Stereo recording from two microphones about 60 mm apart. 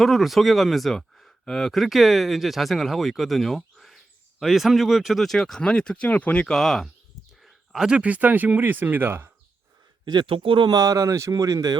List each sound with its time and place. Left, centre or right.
0.0 s speech: centre; by 6.5 s left
6.5 s speech: centre
7.4 s a sound: centre
7.9 s speech: right
10.7 s speech: right